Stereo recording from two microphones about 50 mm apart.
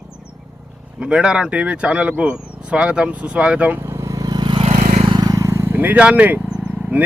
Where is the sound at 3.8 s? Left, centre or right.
Right.